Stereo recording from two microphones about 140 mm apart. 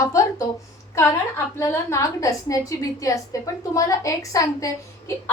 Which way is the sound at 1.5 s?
20° left (ahead or behind).